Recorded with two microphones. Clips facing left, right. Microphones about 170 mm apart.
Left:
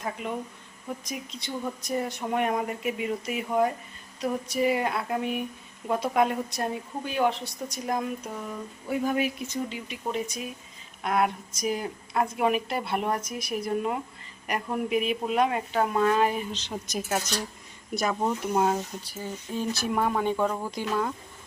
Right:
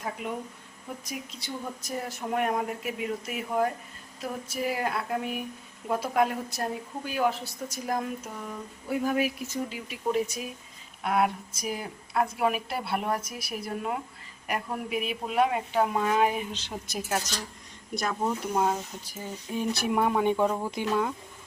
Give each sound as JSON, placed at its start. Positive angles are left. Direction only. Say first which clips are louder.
{"t": 0.2, "sound": "speech", "louder": "left 1 dB", "side_deg": -5}
{"t": 17.9, "sound": "speech", "louder": "left 2 dB", "side_deg": 5}
{"t": 19.0, "sound": "speech", "louder": "left 2 dB", "side_deg": -10}